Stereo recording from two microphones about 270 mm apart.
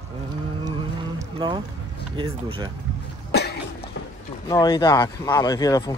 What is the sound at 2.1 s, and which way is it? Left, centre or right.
Speech, centre.